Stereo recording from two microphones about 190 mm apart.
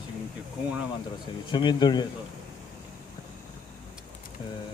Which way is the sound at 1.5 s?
25° left (ahead or behind).